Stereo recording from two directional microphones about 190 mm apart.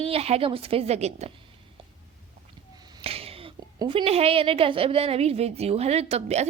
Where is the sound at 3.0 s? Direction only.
30° right (ahead or behind).